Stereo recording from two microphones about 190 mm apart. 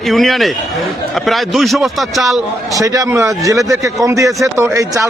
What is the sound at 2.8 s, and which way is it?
A man's voice, 15° right (ahead or behind).